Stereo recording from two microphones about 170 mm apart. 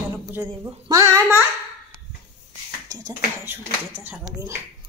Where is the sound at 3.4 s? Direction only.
10° right (ahead or behind).